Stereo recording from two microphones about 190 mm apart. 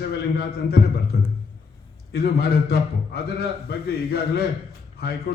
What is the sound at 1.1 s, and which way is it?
A man's voice, 55° left (ahead or behind).